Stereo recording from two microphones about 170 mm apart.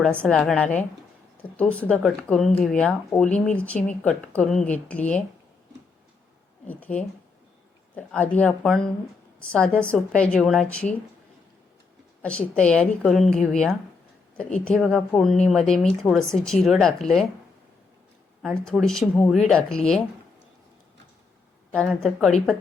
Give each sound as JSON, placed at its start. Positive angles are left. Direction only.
{"t": 0.0, "sound": "a woman's voice", "side_deg": 5}
{"t": 6.7, "sound": "a woman's voice", "side_deg": 10}
{"t": 12.2, "sound": "a woman's voice", "side_deg": 5}
{"t": 18.4, "sound": "a woman's voice", "side_deg": 5}
{"t": 21.7, "sound": "a woman's voice", "side_deg": 5}